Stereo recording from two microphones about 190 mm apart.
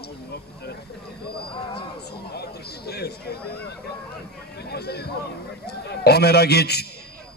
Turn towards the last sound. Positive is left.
turn(degrees=55)  # may be behind; listen again after turning